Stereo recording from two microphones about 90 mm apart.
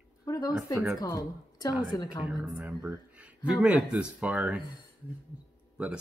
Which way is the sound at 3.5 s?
10° right (ahead or behind).